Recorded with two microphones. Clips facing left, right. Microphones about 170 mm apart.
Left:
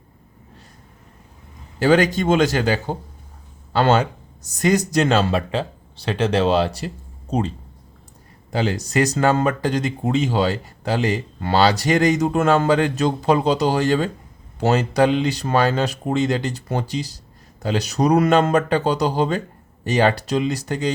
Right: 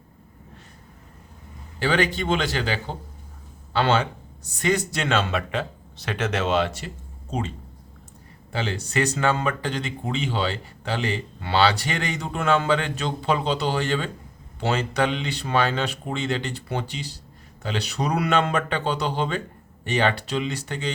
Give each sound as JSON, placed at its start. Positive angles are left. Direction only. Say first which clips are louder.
{"t": 1.8, "sound": "speech", "louder": "left 7 dB", "side_deg": 40}
{"t": 8.5, "sound": "speech", "louder": "left 6 dB", "side_deg": 40}